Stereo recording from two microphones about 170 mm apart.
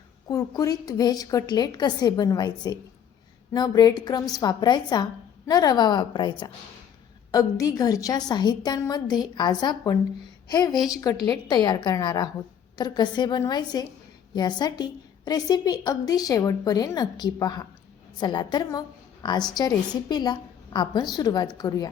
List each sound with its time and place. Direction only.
0.3 s a woman's voice: 20° left (ahead or behind)